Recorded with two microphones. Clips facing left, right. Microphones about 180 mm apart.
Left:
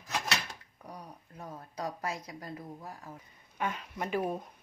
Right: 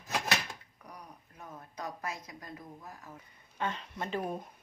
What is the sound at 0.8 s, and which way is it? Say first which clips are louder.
A woman's voice: left 4 dB; 30° left (ahead or behind).